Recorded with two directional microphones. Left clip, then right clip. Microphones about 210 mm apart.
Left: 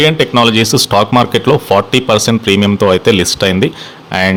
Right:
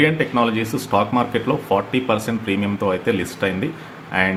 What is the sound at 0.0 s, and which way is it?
Speech, 45° left (ahead or behind).